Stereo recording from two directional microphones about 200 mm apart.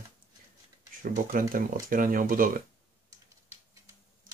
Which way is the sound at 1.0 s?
45° right (ahead or behind).